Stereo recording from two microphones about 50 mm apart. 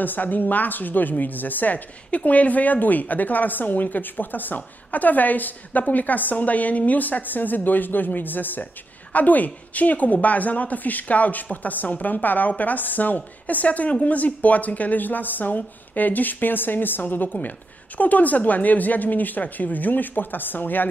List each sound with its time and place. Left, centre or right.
0.0 s a woman's voice: left